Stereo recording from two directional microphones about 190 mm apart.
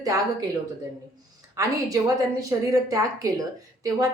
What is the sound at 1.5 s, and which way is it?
A woman's voice, 20° right (ahead or behind).